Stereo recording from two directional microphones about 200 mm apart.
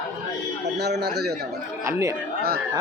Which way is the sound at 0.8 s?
55° right (ahead or behind).